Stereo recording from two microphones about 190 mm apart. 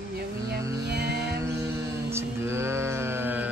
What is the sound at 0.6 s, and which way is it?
Music, 15° right (ahead or behind).